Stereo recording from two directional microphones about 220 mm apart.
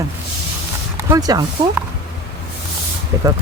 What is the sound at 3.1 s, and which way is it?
Speech, 15° right (ahead or behind).